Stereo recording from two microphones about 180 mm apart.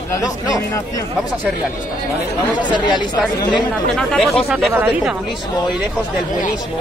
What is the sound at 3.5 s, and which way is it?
Speech, centre (ahead or behind).